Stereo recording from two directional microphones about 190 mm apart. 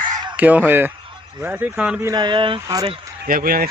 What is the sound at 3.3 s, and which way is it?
Speech, 50° right (ahead or behind).